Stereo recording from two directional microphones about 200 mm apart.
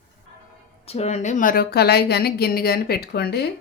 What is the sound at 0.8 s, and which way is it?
A woman's voice, 30° left (ahead or behind).